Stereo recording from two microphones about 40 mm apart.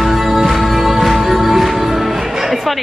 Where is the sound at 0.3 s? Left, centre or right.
Centre.